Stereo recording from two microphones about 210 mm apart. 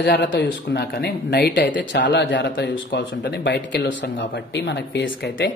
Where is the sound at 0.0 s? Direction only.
55° left (ahead or behind).